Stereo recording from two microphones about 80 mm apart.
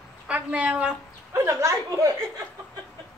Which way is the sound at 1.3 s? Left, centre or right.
Right.